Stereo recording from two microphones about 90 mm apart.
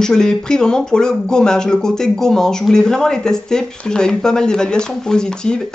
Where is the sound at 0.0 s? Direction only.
5° left (ahead or behind).